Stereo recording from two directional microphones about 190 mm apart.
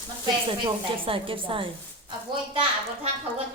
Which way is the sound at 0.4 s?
30° right (ahead or behind).